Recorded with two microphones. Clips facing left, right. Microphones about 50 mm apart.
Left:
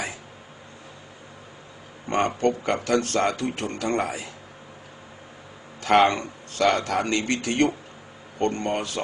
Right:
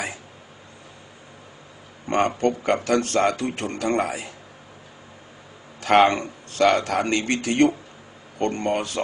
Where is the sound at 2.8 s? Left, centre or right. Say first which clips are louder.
Right 1 dB; right.